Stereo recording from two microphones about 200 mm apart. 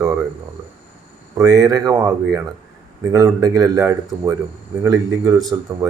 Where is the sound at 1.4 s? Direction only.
20° right (ahead or behind).